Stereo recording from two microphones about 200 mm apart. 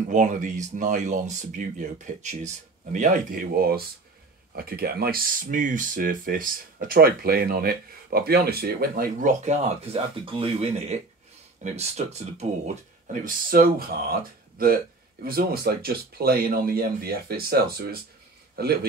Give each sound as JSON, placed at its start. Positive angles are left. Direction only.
{"t": 0.1, "sound": "speech", "side_deg": -40}